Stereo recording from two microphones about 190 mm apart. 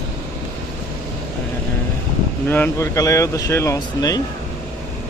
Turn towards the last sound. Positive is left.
turn(degrees=20)  # may be behind; listen again after turning